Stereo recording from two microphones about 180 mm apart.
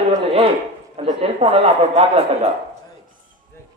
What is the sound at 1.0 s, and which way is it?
Speech, 35° right (ahead or behind).